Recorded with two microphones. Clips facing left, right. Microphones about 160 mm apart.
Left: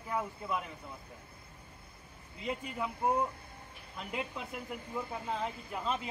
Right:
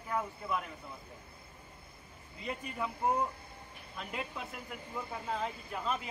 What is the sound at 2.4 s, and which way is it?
Speech, 10° left (ahead or behind).